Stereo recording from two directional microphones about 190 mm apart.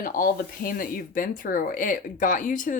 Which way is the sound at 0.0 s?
45° left (ahead or behind).